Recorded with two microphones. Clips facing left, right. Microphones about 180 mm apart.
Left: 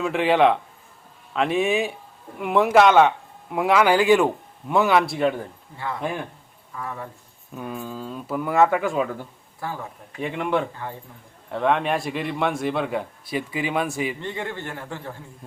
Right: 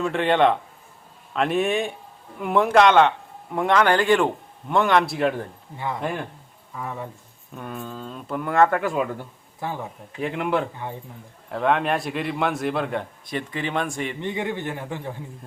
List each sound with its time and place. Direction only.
0.0 s speech: 5° left (ahead or behind)
5.7 s speech: 20° right (ahead or behind)
6.0 s speech: centre (ahead or behind)
6.7 s a man's voice: 15° right (ahead or behind)
7.5 s speech: 5° left (ahead or behind)
9.6 s speech: 20° right (ahead or behind)
10.2 s speech: centre (ahead or behind)
14.2 s a man's voice: 15° right (ahead or behind)